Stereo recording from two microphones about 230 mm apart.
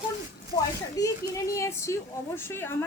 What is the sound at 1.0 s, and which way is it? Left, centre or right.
A woman's voice, centre.